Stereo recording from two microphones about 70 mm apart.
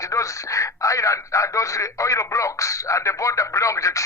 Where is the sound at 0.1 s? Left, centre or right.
Left.